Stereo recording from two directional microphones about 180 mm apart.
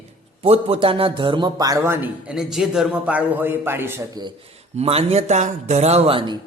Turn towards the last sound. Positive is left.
turn(degrees=-30)  # may be behind; listen again after turning